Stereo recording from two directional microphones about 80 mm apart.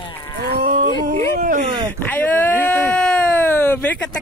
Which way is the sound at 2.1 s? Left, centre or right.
Left.